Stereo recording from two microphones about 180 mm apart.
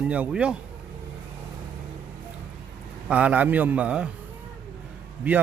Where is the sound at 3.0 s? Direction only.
10° right (ahead or behind).